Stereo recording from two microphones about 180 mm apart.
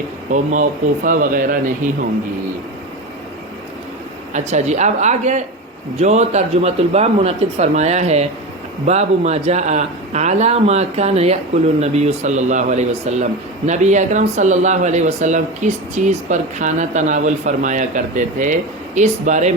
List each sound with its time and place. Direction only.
0.3 s speech: 45° right (ahead or behind)
4.3 s a man's voice: 40° right (ahead or behind)